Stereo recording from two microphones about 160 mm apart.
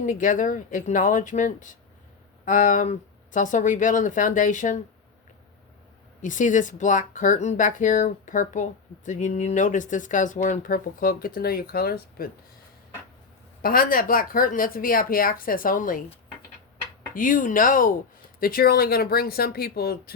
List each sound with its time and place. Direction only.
0.0 s speech: 55° left (ahead or behind)
6.2 s speech: 55° left (ahead or behind); by 12.3 s 70° left (ahead or behind)
13.6 s a woman's voice: 65° left (ahead or behind)
17.2 s a woman's voice: 55° left (ahead or behind)